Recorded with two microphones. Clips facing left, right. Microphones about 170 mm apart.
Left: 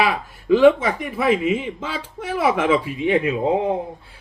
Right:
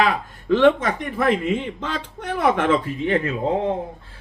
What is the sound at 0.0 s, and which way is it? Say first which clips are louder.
Speech: even; 10° left (ahead or behind).